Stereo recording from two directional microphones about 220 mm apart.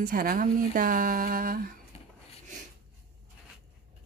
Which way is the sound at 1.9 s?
30° left (ahead or behind).